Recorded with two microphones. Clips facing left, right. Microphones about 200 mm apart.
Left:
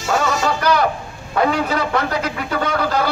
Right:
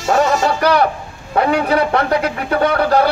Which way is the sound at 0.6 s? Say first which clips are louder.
Right 3 dB; 60° right (ahead or behind).